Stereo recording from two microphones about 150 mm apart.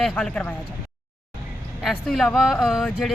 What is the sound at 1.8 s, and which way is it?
Speech, centre (ahead or behind).